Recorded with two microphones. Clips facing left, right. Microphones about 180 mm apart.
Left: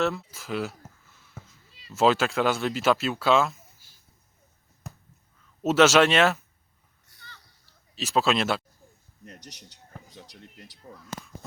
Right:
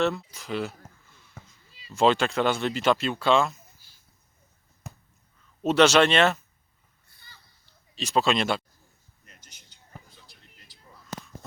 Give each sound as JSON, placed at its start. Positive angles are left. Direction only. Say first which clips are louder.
{"t": 0.0, "sound": "speech", "louder": "right 1 dB", "side_deg": 0}
{"t": 4.8, "sound": "finger snapping", "louder": "left 1 dB", "side_deg": 0}
{"t": 5.6, "sound": "speech", "louder": "even", "side_deg": 5}
{"t": 7.9, "sound": "speech", "louder": "even", "side_deg": 0}
{"t": 9.7, "sound": "a sound", "louder": "left 4 dB", "side_deg": 40}
{"t": 10.9, "sound": "a sound", "louder": "left 7 dB", "side_deg": 55}